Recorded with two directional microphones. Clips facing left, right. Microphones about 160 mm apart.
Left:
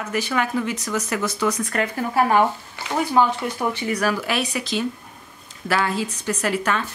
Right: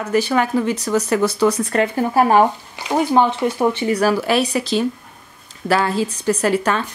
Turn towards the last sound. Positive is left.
turn(degrees=-35)  # may be behind; listen again after turning